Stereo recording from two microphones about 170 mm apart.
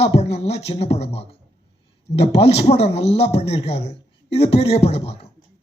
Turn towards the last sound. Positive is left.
turn(degrees=35)  # may be behind; listen again after turning